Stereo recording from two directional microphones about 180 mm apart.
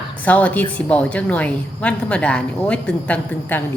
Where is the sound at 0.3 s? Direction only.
10° left (ahead or behind).